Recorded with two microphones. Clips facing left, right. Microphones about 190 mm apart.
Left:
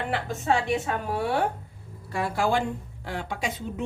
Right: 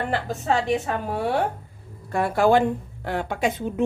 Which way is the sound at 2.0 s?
50° right (ahead or behind).